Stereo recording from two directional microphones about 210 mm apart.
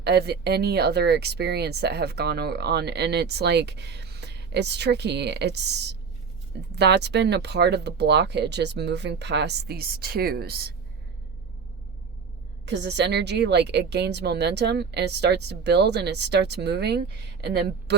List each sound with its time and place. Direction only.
0.0 s speech: 50° right (ahead or behind)
12.6 s speech: 55° right (ahead or behind)